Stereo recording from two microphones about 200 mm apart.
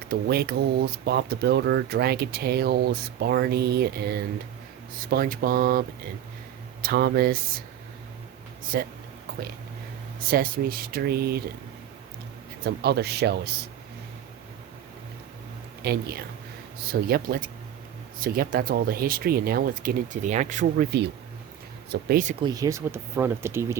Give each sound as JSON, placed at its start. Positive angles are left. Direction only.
{"t": 0.1, "sound": "speech", "side_deg": -50}
{"t": 6.8, "sound": "speech", "side_deg": -50}
{"t": 8.6, "sound": "speech", "side_deg": -45}
{"t": 10.2, "sound": "speech", "side_deg": -45}
{"t": 12.6, "sound": "speech", "side_deg": -55}
{"t": 15.8, "sound": "speech", "side_deg": -50}
{"t": 21.8, "sound": "speech", "side_deg": -40}
{"t": 22.4, "sound": "speech", "side_deg": -20}